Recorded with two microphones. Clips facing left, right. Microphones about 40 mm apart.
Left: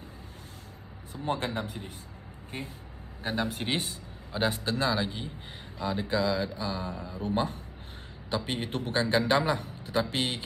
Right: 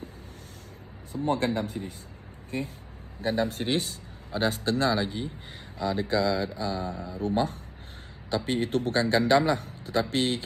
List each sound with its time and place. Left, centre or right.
1.1 s speech: left
1.7 s a man's voice: left
3.2 s speech: left
4.3 s a man's voice: centre; by 7.2 s left
7.2 s speech: left